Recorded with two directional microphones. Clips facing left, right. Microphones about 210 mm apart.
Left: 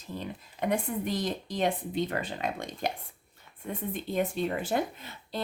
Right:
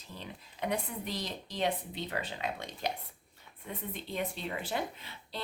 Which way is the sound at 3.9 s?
45° left (ahead or behind).